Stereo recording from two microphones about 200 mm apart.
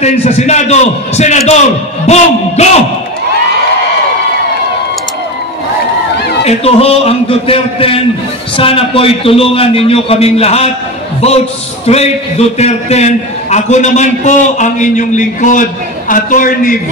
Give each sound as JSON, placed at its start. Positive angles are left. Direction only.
{"t": 0.0, "sound": "a man's voice", "side_deg": 35}
{"t": 6.4, "sound": "a man's voice", "side_deg": 30}
{"t": 11.8, "sound": "a man's voice", "side_deg": 30}